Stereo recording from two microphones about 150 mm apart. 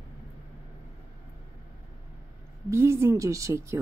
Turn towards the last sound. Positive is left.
turn(degrees=-20)  # may be behind; listen again after turning